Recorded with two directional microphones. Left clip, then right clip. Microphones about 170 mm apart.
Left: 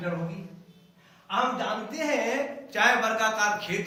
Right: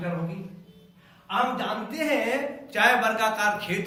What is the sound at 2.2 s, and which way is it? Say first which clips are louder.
A man's voice: right 1 dB; 15° left (ahead or behind).